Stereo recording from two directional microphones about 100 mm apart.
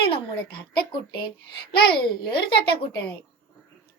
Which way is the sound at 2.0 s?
55° left (ahead or behind).